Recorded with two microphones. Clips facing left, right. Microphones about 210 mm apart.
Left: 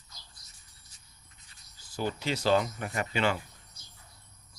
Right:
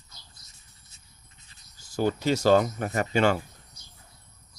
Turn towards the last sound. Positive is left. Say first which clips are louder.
# right 6 dB
turn(degrees=-45)  # may be behind; listen again after turning